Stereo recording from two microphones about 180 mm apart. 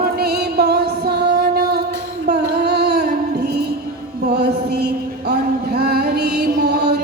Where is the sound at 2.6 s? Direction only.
65° right (ahead or behind).